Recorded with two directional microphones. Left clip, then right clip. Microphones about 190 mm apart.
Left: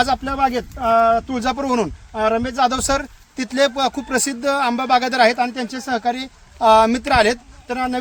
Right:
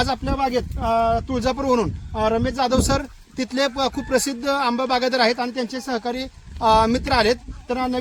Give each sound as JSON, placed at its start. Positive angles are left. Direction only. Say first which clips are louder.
{"t": 0.0, "sound": "speech", "louder": "left 4 dB", "side_deg": 20}